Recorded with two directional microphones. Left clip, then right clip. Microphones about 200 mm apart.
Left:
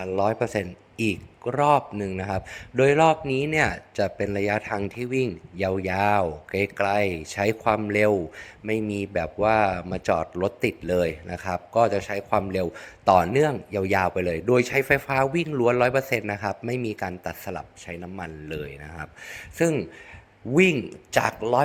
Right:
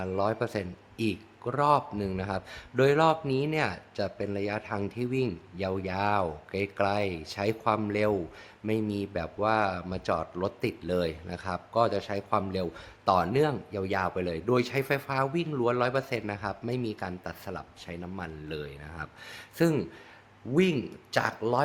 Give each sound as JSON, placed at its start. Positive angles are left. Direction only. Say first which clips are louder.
{"t": 0.0, "sound": "speech", "louder": "left 5 dB", "side_deg": 10}
{"t": 20.5, "sound": "speech", "louder": "left 7 dB", "side_deg": 20}